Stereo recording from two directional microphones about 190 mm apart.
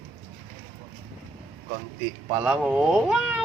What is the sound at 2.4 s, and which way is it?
Speech, 5° right (ahead or behind).